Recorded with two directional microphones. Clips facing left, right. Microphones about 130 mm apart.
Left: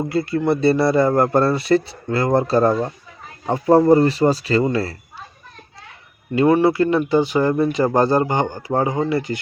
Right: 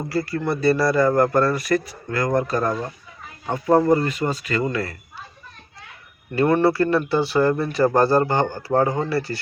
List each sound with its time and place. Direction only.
0.1 s speech: 25° left (ahead or behind)
6.3 s speech: 15° left (ahead or behind)